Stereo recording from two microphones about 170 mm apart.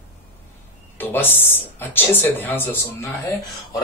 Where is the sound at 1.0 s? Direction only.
10° left (ahead or behind).